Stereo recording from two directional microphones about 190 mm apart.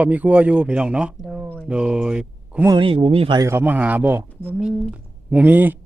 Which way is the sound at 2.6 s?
25° right (ahead or behind).